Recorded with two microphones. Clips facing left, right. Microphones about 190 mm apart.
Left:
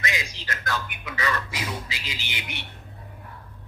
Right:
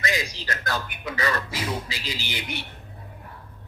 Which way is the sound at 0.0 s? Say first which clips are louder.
Right 4 dB; 35° right (ahead or behind).